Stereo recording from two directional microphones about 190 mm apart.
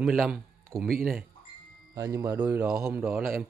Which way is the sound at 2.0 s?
15° right (ahead or behind).